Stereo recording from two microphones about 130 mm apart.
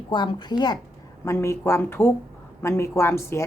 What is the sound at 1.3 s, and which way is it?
A woman's voice, 20° left (ahead or behind).